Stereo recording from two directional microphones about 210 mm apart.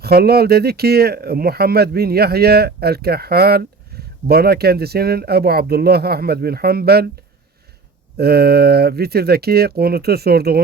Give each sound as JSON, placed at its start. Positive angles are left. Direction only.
{"t": 0.0, "sound": "speech", "side_deg": -50}
{"t": 8.2, "sound": "speech", "side_deg": -50}